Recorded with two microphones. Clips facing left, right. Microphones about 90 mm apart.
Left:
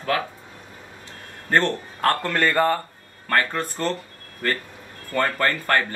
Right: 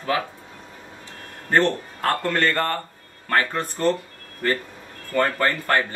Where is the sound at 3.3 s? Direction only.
10° right (ahead or behind).